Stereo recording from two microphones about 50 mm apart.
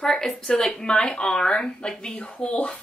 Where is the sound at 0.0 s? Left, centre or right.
Centre.